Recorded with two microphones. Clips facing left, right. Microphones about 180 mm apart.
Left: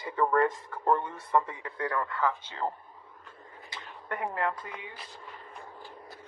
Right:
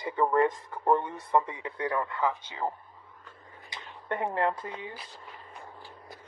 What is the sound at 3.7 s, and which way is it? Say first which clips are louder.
Speech: right 3 dB; 20° right (ahead or behind).